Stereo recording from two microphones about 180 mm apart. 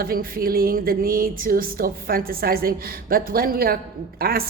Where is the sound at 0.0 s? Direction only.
55° right (ahead or behind).